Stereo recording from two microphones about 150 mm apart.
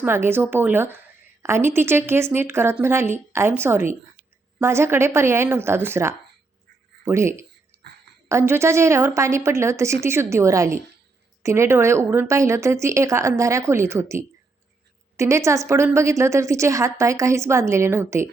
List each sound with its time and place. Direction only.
0.0 s a woman's voice: 15° right (ahead or behind)